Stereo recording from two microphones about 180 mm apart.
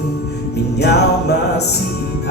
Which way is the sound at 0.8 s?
65° left (ahead or behind).